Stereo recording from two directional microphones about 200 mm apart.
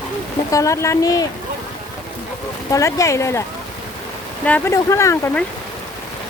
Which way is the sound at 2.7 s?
15° left (ahead or behind).